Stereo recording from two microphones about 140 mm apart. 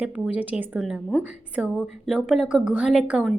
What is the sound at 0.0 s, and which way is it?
A woman's voice, 10° right (ahead or behind).